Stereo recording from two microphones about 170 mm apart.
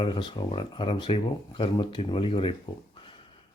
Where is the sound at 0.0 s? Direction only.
30° left (ahead or behind).